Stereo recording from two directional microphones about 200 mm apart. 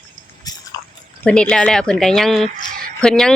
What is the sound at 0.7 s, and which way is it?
Chewing, 15° left (ahead or behind).